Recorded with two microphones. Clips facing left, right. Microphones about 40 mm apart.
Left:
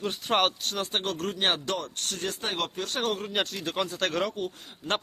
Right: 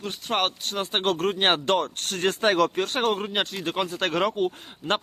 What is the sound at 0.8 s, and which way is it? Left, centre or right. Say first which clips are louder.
Speech: right 4 dB; right.